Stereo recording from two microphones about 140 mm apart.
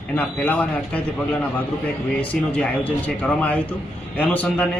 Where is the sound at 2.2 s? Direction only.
10° left (ahead or behind).